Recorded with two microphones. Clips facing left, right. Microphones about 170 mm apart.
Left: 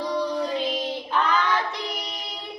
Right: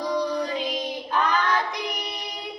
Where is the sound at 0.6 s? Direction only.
15° right (ahead or behind).